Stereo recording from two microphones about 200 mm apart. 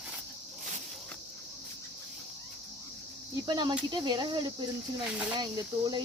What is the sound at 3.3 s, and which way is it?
Speech, 20° right (ahead or behind).